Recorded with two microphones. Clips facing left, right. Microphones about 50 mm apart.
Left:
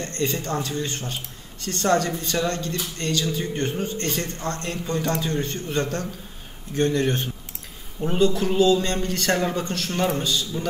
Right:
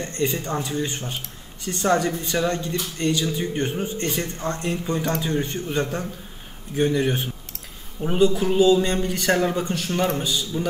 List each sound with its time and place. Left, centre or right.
0.0 s speech: centre